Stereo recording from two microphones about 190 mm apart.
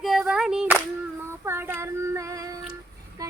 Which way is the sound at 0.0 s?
Centre (ahead or behind).